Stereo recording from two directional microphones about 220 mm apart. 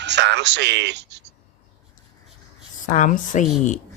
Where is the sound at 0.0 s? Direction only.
50° right (ahead or behind).